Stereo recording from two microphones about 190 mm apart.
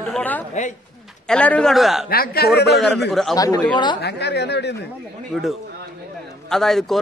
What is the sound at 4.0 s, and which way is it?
Speech, 60° left (ahead or behind).